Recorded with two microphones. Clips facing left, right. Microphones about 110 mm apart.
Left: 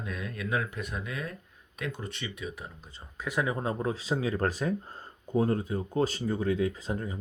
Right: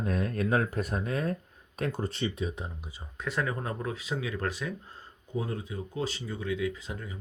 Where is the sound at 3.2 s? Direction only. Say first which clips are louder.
Left 2 dB; 10° left (ahead or behind).